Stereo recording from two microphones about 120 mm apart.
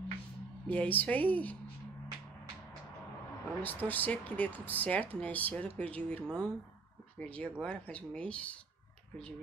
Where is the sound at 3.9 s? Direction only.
15° left (ahead or behind).